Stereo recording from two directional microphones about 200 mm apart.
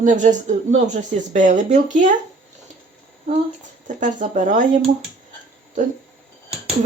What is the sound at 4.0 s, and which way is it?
Speech, 40° right (ahead or behind).